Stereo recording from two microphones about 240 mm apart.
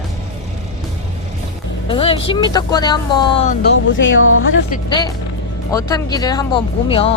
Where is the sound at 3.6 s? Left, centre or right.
Left.